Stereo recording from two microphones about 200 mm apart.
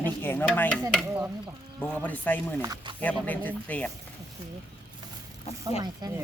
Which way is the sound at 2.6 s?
20° right (ahead or behind).